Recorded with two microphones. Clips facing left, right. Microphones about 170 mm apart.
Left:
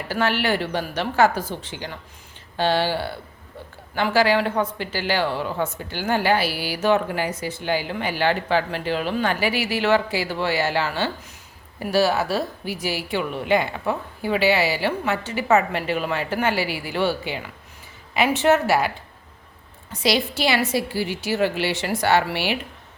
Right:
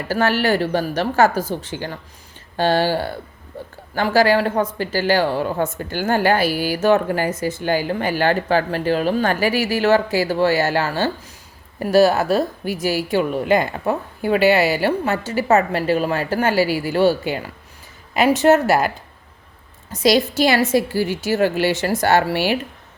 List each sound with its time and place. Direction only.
0.1 s a woman's voice: 45° right (ahead or behind)
19.9 s a woman's voice: 40° right (ahead or behind)